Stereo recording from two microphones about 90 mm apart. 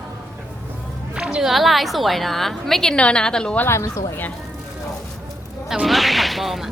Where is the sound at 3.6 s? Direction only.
30° left (ahead or behind).